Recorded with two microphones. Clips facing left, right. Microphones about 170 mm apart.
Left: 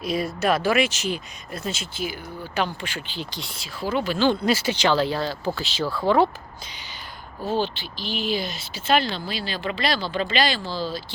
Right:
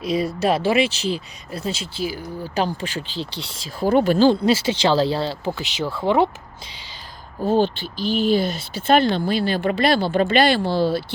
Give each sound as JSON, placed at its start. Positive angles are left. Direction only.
{"t": 0.0, "sound": "speech", "side_deg": -30}
{"t": 3.8, "sound": "speech", "side_deg": -50}
{"t": 4.3, "sound": "speech", "side_deg": -25}
{"t": 7.4, "sound": "speech", "side_deg": -50}